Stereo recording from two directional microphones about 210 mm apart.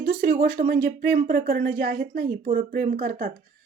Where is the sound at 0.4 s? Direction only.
50° right (ahead or behind).